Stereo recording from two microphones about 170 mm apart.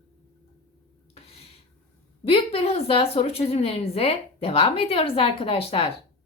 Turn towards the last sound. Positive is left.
turn(degrees=30)  # may be behind; listen again after turning